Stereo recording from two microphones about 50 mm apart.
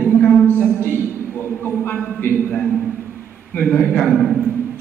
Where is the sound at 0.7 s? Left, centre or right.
Left.